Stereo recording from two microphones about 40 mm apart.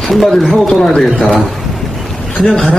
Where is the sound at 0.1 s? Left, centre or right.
Centre.